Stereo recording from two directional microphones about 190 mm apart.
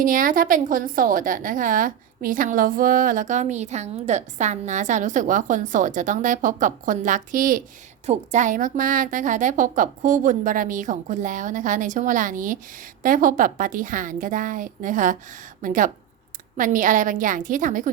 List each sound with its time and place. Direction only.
0.0 s a woman's voice: 45° right (ahead or behind)